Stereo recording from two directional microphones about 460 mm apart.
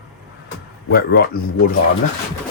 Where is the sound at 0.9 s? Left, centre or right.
Centre.